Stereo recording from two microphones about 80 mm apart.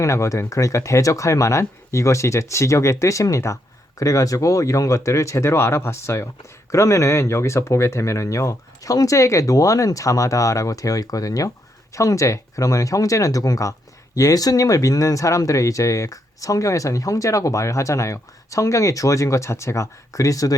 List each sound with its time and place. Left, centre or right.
0.0 s speech: left